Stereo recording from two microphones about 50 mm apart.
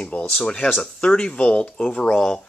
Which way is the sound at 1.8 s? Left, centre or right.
Centre.